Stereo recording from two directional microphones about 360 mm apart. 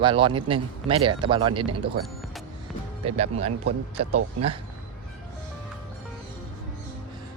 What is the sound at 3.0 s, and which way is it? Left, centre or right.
Speech, centre.